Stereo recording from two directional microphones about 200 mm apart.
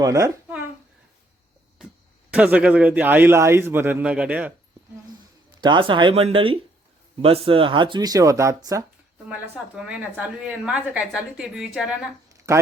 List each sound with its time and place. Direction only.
0.0 s a child's voice: 15° right (ahead or behind)
2.3 s a man's voice: 5° right (ahead or behind)
5.5 s speech: 25° right (ahead or behind)
9.7 s a woman's voice: 5° right (ahead or behind)